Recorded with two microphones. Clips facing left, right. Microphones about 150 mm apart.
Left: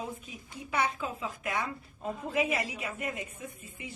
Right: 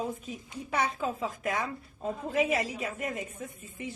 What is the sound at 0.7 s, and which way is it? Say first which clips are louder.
Speech: right 1 dB; 40° right (ahead or behind).